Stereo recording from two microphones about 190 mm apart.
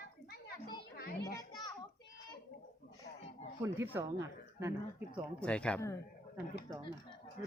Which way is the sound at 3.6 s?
10° right (ahead or behind).